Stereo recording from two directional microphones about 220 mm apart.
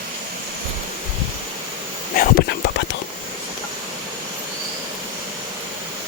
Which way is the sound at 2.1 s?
50° left (ahead or behind).